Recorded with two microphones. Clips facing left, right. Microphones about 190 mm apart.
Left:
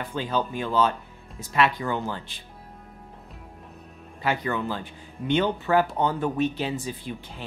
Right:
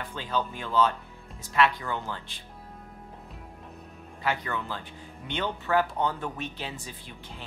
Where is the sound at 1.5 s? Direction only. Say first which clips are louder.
Left 2 dB; 15° left (ahead or behind).